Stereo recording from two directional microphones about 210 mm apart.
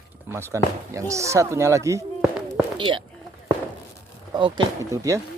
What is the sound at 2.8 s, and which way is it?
Speech, 25° right (ahead or behind).